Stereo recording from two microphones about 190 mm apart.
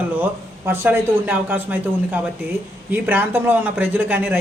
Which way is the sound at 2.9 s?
10° right (ahead or behind).